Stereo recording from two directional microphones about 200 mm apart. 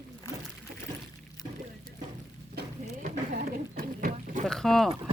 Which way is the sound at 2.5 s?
45° right (ahead or behind).